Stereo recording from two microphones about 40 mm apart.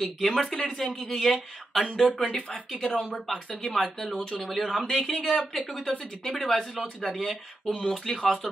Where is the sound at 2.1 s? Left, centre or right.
Left.